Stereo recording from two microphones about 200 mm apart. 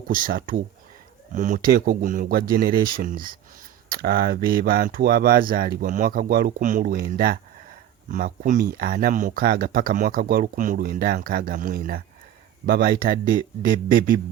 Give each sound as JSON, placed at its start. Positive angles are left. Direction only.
{"t": 0.1, "sound": "speech", "side_deg": -45}